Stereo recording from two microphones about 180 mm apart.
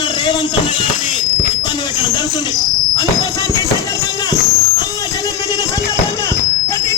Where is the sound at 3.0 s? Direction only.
20° left (ahead or behind).